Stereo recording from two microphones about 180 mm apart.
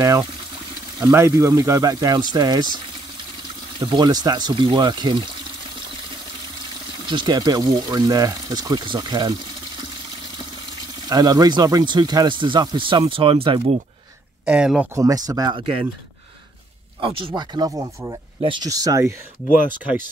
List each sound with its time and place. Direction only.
0.0 s speech: 20° right (ahead or behind)
3.8 s speech: 25° right (ahead or behind)
7.1 s speech: 25° right (ahead or behind)
11.1 s speech: 20° right (ahead or behind)
14.4 s speech: 5° right (ahead or behind)
15.0 s speech: 20° right (ahead or behind)
17.0 s speech: 30° right (ahead or behind)